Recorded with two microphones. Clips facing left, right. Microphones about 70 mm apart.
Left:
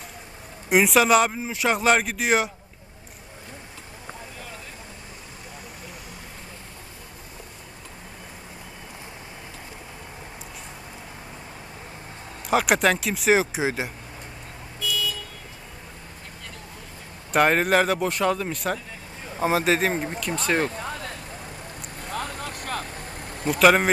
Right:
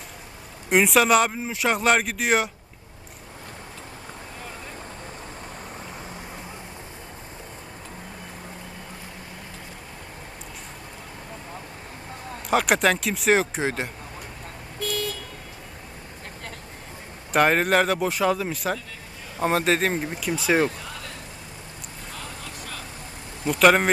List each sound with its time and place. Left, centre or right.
0.7 s speech: centre
12.5 s speech: centre
14.8 s vehicle: right
17.3 s speech: centre
22.1 s vehicle: left
23.5 s speech: centre